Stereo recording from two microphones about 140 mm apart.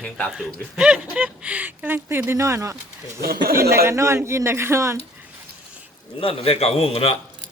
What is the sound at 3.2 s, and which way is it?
Speech, 90° right.